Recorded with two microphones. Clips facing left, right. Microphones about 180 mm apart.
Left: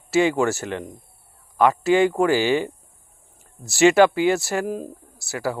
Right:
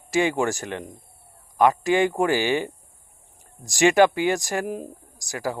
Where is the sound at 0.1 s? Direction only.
15° right (ahead or behind).